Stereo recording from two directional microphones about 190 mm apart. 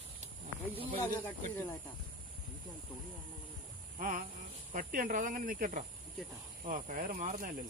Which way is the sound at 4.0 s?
45° right (ahead or behind).